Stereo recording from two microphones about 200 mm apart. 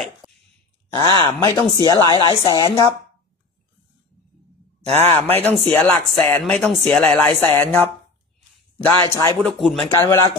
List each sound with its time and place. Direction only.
0.2 s dog: 20° right (ahead or behind)
0.9 s speech: 20° left (ahead or behind)
5.3 s speech: 10° left (ahead or behind)
9.4 s speech: centre (ahead or behind)
9.9 s speech: 15° left (ahead or behind)